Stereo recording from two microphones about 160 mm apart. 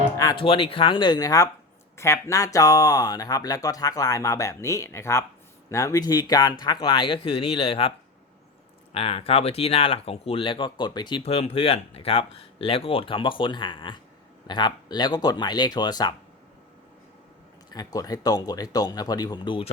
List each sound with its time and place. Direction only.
0.2 s music: 25° left (ahead or behind)
0.4 s speech: 35° left (ahead or behind)
17.7 s speech: 25° left (ahead or behind)